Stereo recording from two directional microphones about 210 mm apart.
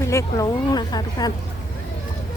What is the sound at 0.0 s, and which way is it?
Speech, 15° left (ahead or behind).